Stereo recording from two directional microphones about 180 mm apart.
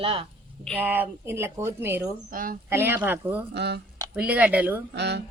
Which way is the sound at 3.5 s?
65° right (ahead or behind).